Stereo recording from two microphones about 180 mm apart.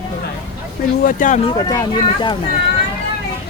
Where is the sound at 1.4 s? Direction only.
20° left (ahead or behind).